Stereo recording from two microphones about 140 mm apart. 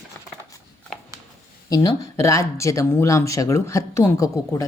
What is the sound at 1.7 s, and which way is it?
Speech, 25° left (ahead or behind).